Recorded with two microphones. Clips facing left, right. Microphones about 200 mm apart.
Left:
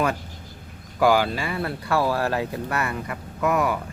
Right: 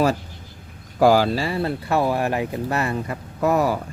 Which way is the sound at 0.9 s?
40° right (ahead or behind).